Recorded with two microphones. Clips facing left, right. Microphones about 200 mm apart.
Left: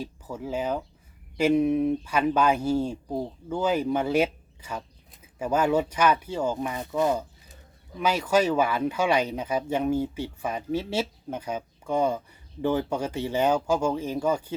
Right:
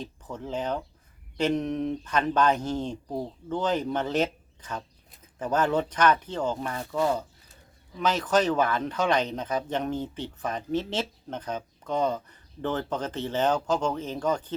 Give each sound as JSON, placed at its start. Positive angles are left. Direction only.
{"t": 0.0, "sound": "speech", "side_deg": 10}